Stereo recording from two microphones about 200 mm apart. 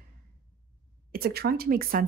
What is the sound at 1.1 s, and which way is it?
Speech, 50° right (ahead or behind).